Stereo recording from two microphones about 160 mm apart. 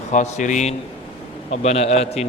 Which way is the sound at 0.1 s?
50° left (ahead or behind).